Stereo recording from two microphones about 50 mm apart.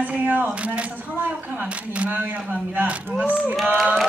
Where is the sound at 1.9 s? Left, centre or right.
Right.